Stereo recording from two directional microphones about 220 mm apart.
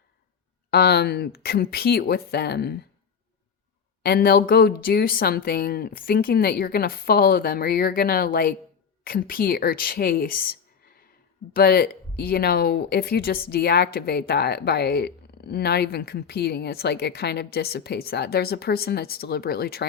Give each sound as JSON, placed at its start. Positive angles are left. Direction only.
{"t": 0.7, "sound": "speech", "side_deg": 45}
{"t": 4.0, "sound": "speech", "side_deg": 45}